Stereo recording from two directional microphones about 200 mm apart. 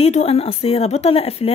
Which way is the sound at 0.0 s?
30° left (ahead or behind).